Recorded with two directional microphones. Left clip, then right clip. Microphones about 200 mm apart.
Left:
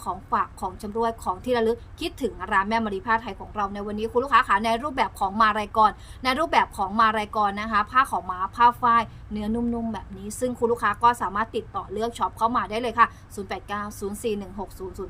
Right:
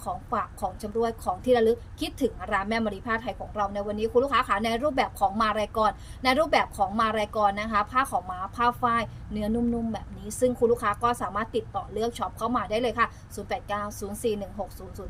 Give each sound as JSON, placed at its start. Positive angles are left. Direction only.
{"t": 0.0, "sound": "a woman's voice", "side_deg": 15}